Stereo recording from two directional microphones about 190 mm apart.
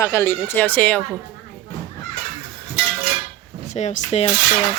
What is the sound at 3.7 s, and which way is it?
Speech, 35° left (ahead or behind).